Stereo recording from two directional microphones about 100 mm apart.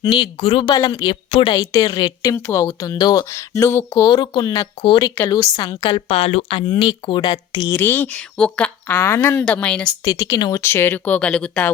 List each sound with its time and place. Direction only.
0.0 s a woman's voice: 50° left (ahead or behind)
0.3 s a woman's voice: 65° left (ahead or behind); by 1.0 s 45° left (ahead or behind)
1.0 s a woman's voice: 60° left (ahead or behind)
1.5 s speech: 35° left (ahead or behind)
1.9 s a woman's voice: 50° left (ahead or behind)
2.3 s speech: 30° left (ahead or behind)
3.3 s speech: 25° left (ahead or behind)
4.0 s speech: 45° left (ahead or behind)
4.8 s a woman's voice: 55° left (ahead or behind)
5.2 s a woman's voice: 40° left (ahead or behind)
7.7 s speech: 20° left (ahead or behind)
9.4 s speech: 10° left (ahead or behind)
10.0 s a woman's voice: 40° left (ahead or behind)
10.5 s speech: 25° left (ahead or behind)